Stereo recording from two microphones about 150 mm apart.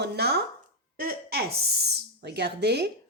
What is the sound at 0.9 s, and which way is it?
Speech, 75° right (ahead or behind).